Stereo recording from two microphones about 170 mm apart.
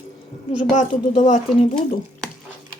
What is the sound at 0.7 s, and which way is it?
Speech, 45° left (ahead or behind).